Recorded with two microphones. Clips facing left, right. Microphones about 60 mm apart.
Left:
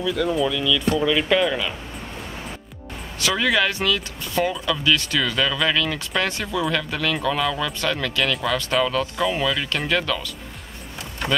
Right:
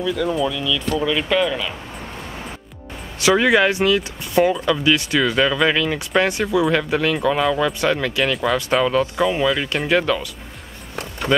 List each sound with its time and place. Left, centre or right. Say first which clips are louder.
0.0 s speech: right 1 dB; centre
3.2 s speech: right 6 dB; right
8.3 s speech: right 3 dB; centre
8.8 s speech: right 4 dB; centre